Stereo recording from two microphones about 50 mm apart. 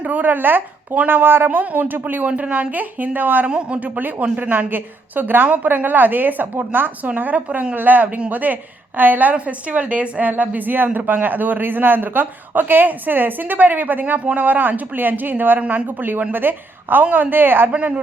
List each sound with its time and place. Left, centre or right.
0.0 s a woman's voice: right
1.5 s a woman's voice: right
2.2 s a woman's voice: right
3.4 s a woman's voice: right
9.3 s a woman's voice: right
17.7 s speech: right